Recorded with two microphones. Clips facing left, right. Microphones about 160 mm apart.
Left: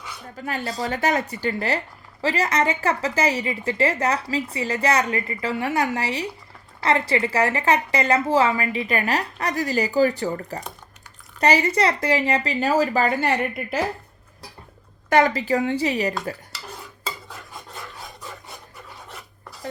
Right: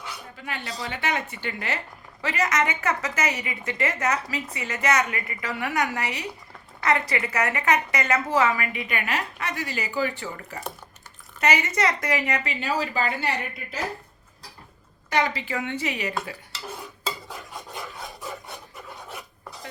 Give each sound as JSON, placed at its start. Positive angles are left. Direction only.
{"t": 0.4, "sound": "a woman's voice", "side_deg": 40}
{"t": 15.1, "sound": "a woman's voice", "side_deg": 45}
{"t": 17.7, "sound": "filing", "side_deg": -10}